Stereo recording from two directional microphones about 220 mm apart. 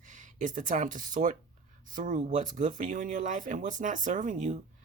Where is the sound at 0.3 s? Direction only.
35° right (ahead or behind).